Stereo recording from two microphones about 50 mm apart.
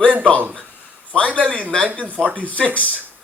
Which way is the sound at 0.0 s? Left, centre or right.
Left.